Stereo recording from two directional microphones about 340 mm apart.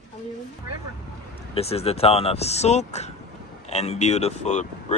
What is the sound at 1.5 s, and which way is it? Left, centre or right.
Speech, centre.